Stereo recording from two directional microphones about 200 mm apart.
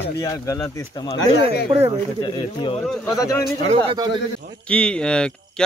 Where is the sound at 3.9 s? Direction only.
25° right (ahead or behind).